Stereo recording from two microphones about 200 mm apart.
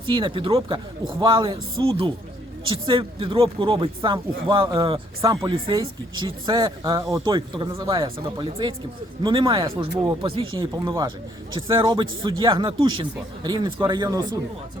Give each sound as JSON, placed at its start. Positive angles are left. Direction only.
{"t": 0.0, "sound": "speech", "side_deg": -25}